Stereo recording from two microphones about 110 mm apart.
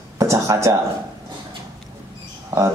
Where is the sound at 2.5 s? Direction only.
30° right (ahead or behind).